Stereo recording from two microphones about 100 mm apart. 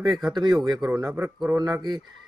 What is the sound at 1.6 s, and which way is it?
Speech, 45° right (ahead or behind).